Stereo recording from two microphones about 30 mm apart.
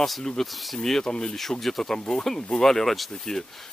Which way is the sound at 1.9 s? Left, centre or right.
Left.